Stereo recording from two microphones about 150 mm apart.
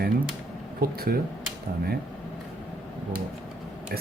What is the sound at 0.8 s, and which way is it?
Speech, 90° right.